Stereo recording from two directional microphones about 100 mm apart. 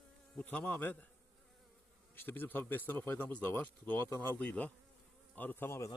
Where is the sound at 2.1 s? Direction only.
20° left (ahead or behind).